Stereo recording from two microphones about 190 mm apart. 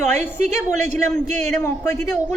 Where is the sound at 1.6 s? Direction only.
10° left (ahead or behind).